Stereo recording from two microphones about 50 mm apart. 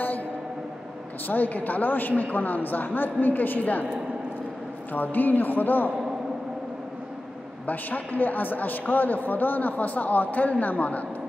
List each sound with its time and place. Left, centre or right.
1.3 s a man's voice: left
4.9 s a man's voice: left
7.6 s a man's voice: left